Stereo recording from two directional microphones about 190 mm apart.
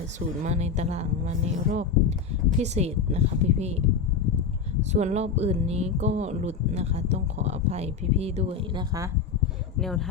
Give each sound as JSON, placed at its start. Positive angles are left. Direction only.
{"t": 0.4, "sound": "speech", "side_deg": -35}
{"t": 4.9, "sound": "speech", "side_deg": -35}
{"t": 9.7, "sound": "speech", "side_deg": 0}